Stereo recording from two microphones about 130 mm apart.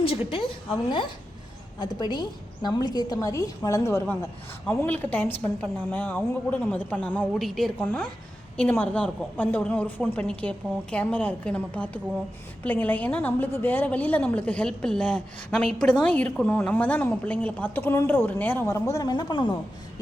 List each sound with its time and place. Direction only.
0.0 s a woman's voice: 45° left (ahead or behind); by 7.7 s centre (ahead or behind)
7.8 s a woman's voice: 15° left (ahead or behind)
18.7 s speech: 25° left (ahead or behind)